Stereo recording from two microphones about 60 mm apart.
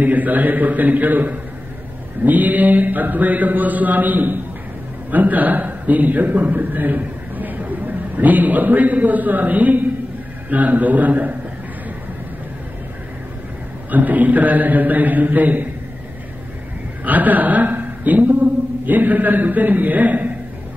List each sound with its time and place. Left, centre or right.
0.0 s mantra: right
5.1 s a man's voice: right
10.5 s mantra: right
13.8 s mantra: right
17.0 s a woman's voice: right